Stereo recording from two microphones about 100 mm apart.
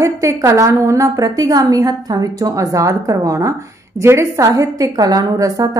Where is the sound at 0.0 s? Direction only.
30° right (ahead or behind).